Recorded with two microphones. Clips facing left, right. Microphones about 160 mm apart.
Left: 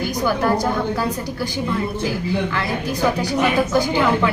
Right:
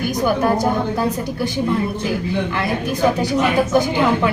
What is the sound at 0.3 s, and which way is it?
Speech, 20° right (ahead or behind).